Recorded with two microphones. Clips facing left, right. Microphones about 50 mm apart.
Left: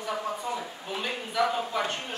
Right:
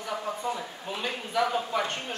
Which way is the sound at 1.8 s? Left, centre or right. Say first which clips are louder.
Even; centre.